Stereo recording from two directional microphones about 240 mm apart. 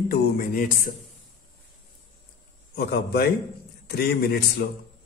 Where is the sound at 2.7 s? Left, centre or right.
Left.